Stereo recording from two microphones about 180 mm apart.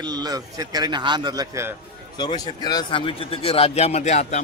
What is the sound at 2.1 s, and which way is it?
A man's voice, 20° left (ahead or behind).